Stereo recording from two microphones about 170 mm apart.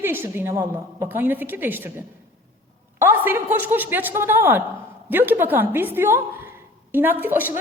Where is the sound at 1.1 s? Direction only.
10° right (ahead or behind).